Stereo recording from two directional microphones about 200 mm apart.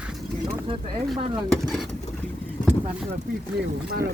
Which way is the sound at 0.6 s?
25° right (ahead or behind).